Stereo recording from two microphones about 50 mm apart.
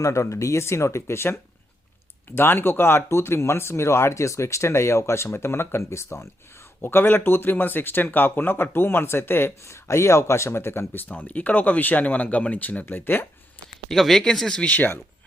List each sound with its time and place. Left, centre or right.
0.0 s speech: left
2.3 s speech: left
6.8 s speech: left
9.6 s speech: left
11.1 s speech: left
12.9 s speech: left
13.9 s speech: centre
14.7 s speech: left